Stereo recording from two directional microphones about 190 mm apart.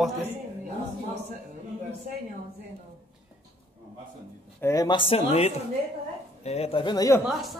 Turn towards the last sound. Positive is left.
turn(degrees=0)  # may be behind; listen again after turning